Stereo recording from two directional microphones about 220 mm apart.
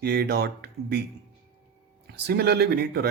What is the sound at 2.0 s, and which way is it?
Speech, 50° right (ahead or behind).